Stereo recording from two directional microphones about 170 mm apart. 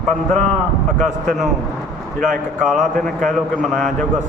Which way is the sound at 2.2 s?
Centre (ahead or behind).